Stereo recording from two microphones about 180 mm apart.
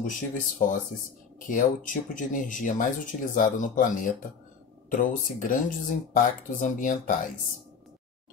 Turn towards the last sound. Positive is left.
turn(degrees=50)  # may be behind; listen again after turning